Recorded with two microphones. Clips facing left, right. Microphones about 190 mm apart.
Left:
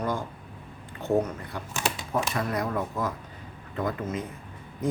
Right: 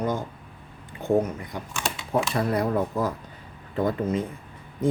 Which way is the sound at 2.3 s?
30° right (ahead or behind).